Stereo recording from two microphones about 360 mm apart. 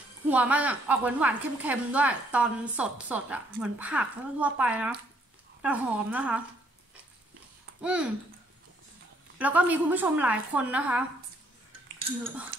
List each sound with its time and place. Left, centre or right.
0.3 s a woman's voice: centre
7.8 s a woman's voice: centre
9.4 s a woman's voice: centre